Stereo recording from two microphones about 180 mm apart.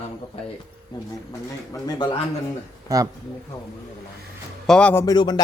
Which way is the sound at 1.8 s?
25° left (ahead or behind).